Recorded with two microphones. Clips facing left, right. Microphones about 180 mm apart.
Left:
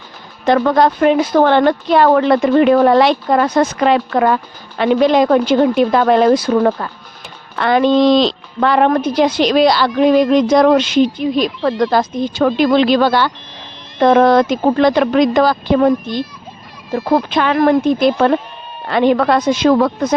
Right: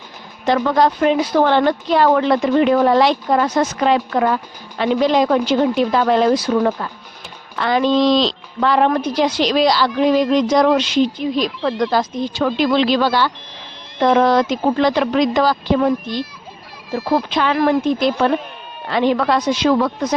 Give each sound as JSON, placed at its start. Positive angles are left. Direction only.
{"t": 0.4, "sound": "a woman's voice", "side_deg": 55}